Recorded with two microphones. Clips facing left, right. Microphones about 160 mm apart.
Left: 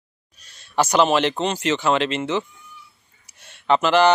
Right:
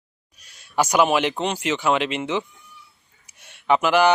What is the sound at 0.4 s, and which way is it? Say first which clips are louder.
Speech: left 1 dB; 10° right (ahead or behind).